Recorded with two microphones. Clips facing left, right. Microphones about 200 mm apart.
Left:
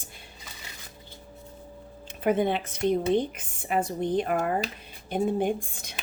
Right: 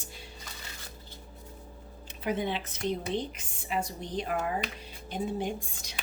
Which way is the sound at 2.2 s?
55° left (ahead or behind).